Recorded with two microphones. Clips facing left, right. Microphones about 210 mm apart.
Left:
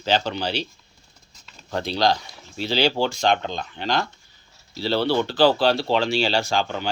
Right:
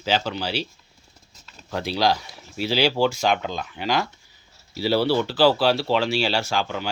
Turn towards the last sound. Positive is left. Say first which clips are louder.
# left 2 dB
turn(degrees=-5)  # may be behind; listen again after turning